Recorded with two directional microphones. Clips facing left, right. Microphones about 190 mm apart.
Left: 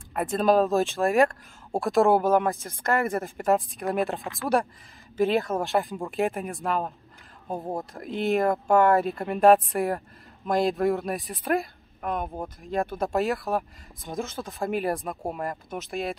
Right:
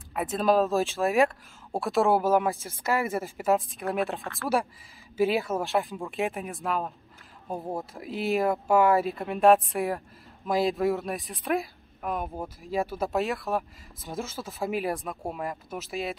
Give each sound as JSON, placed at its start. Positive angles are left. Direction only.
{"t": 0.1, "sound": "speech", "side_deg": 0}
{"t": 4.2, "sound": "speech", "side_deg": 15}
{"t": 5.1, "sound": "speech", "side_deg": -5}
{"t": 7.7, "sound": "speech", "side_deg": -5}